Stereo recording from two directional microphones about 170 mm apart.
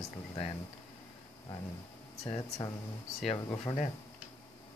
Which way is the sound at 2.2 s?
35° left (ahead or behind).